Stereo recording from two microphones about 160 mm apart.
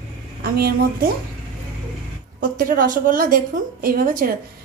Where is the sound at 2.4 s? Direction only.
60° right (ahead or behind).